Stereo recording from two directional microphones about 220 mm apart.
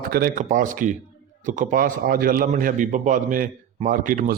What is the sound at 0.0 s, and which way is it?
A man's voice, 40° right (ahead or behind).